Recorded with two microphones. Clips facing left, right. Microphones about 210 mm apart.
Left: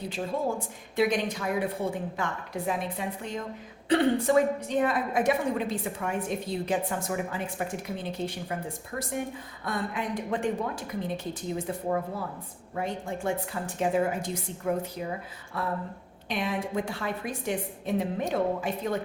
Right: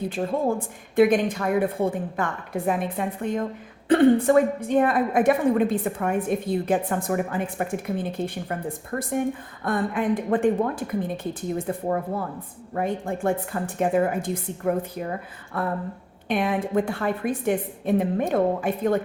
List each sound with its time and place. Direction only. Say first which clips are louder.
0.1 s a woman's voice: right 4 dB; 55° right (ahead or behind)